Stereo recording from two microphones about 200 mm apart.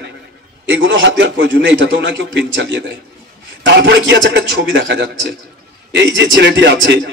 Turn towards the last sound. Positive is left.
turn(degrees=-60)  # may be behind; listen again after turning